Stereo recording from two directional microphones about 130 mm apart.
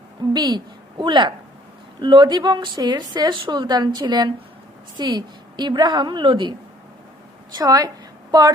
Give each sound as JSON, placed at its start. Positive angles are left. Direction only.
{"t": 0.3, "sound": "a woman's voice", "side_deg": -35}
{"t": 7.5, "sound": "a woman's voice", "side_deg": -30}